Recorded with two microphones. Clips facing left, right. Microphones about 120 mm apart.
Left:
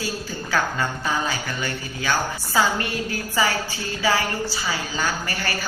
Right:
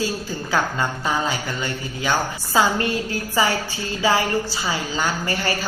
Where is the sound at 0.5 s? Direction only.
25° right (ahead or behind).